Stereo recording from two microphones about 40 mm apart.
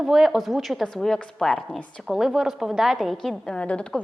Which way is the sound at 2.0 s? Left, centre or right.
Centre.